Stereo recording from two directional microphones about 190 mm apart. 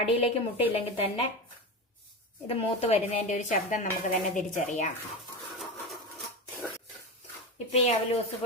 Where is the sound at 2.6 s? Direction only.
35° left (ahead or behind).